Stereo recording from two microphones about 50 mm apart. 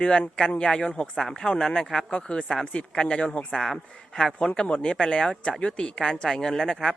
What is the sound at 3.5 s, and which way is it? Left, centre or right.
Speech, centre.